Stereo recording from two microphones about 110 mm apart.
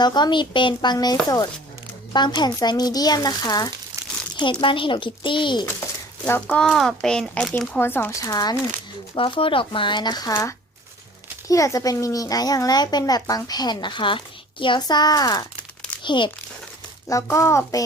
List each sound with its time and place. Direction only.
0.0 s speech: 40° left (ahead or behind)
2.1 s a child's voice: 40° left (ahead or behind)
4.6 s speech: 50° left (ahead or behind)
6.2 s a child's voice: 20° left (ahead or behind)
6.6 s a child's voice: 5° left (ahead or behind)
7.8 s a child's voice: 20° left (ahead or behind)
8.2 s a child's voice: 35° left (ahead or behind)
9.1 s a child's voice: 55° left (ahead or behind); by 15.4 s 35° left (ahead or behind)
16.0 s speech: 45° left (ahead or behind)
17.1 s a child's voice: 30° left (ahead or behind)